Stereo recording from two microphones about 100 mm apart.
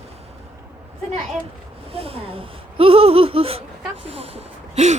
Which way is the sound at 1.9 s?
75° right (ahead or behind).